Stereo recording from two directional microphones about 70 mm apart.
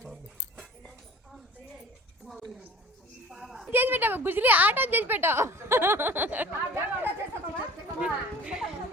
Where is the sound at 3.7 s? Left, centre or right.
Right.